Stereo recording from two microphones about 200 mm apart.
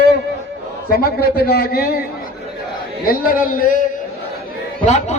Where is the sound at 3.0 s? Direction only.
45° left (ahead or behind).